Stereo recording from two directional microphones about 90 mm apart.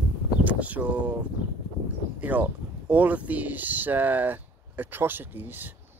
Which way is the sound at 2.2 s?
20° right (ahead or behind).